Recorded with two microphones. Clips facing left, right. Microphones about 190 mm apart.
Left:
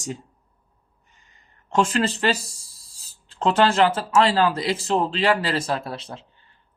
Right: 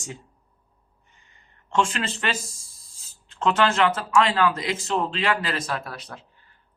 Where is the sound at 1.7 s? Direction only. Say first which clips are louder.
Left 4 dB; 40° left (ahead or behind).